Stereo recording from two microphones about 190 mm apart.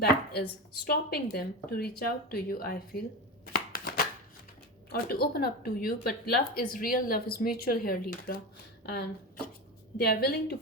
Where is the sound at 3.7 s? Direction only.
50° left (ahead or behind).